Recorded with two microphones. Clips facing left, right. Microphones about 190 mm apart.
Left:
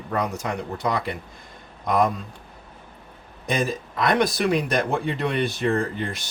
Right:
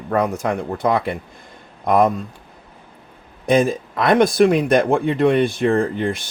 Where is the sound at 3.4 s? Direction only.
55° right (ahead or behind).